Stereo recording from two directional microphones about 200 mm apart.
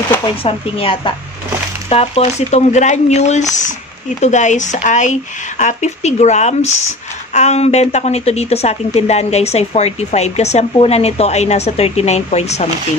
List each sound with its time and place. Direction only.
0.2 s a woman's voice: 30° left (ahead or behind)